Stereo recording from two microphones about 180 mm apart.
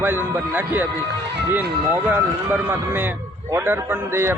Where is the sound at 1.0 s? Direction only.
65° right (ahead or behind).